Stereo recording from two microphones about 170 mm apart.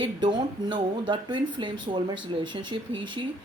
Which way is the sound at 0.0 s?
25° right (ahead or behind).